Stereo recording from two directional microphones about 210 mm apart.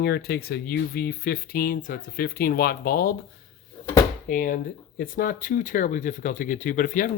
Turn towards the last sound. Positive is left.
turn(degrees=40)  # may be behind; listen again after turning